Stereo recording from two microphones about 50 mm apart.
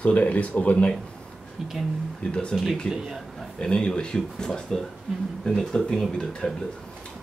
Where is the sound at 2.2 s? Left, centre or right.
Left; by 6.5 s centre.